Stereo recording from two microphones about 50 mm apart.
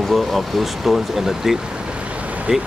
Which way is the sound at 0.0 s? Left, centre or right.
Centre.